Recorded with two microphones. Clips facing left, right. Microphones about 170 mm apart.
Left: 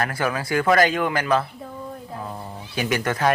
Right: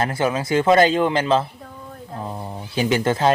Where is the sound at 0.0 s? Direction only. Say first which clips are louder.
Right 3 dB; 25° right (ahead or behind).